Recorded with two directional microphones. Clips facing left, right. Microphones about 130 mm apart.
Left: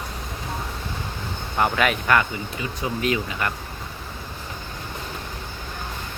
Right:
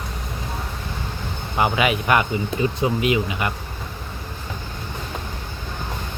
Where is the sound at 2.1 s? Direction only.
20° right (ahead or behind).